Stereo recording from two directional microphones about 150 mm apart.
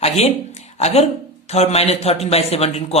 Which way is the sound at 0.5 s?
45° left (ahead or behind).